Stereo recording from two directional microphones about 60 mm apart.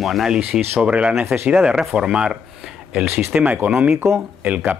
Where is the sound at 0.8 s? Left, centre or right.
Right.